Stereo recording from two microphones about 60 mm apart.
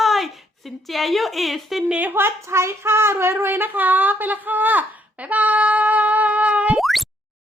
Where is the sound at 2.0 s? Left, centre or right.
Right.